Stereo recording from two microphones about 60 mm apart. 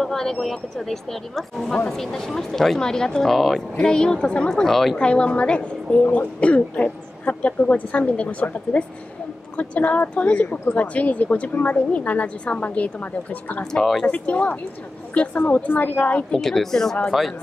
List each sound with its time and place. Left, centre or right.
0.0 s a woman's voice: centre
3.7 s speech: centre
4.9 s speech: centre
13.7 s a woman's voice: centre
14.0 s speech: left
16.3 s speech: centre